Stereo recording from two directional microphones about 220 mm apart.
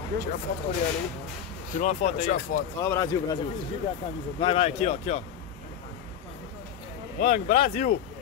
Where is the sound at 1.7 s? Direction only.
30° left (ahead or behind).